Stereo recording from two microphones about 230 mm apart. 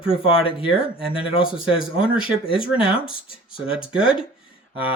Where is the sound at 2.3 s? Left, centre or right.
Left.